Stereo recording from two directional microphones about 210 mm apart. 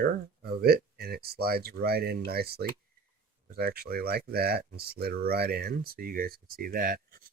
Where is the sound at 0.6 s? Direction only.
50° right (ahead or behind).